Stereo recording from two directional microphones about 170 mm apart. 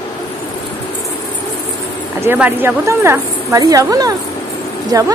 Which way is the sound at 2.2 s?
10° right (ahead or behind).